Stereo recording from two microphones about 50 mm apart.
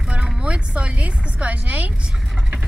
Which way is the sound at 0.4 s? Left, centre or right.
Right.